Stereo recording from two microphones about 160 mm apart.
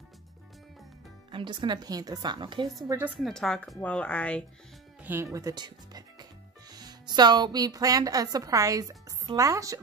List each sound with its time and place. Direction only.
1.3 s a woman's voice: 30° right (ahead or behind)
3.2 s speech: centre (ahead or behind)
5.0 s speech: 15° right (ahead or behind)